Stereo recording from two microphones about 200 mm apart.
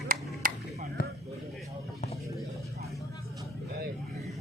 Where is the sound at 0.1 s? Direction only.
45° right (ahead or behind).